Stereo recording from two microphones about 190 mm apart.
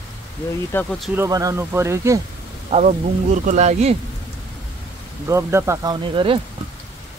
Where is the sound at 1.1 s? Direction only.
15° right (ahead or behind).